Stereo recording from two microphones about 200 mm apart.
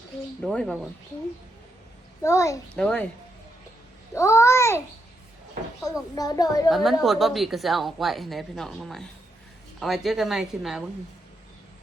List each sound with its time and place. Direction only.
0.4 s speech: 5° left (ahead or behind)
2.2 s a child's voice: 15° left (ahead or behind)
4.1 s a child's voice: 15° left (ahead or behind)
6.1 s a woman's voice: 20° left (ahead or behind)
6.7 s speech: centre (ahead or behind)